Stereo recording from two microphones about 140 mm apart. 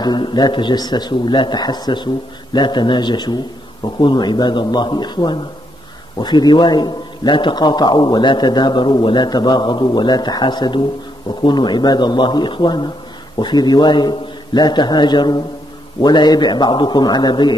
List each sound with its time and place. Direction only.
0.0 s a man's voice: 30° left (ahead or behind)